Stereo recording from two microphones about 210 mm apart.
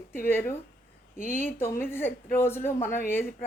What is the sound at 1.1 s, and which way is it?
Speech, 35° right (ahead or behind).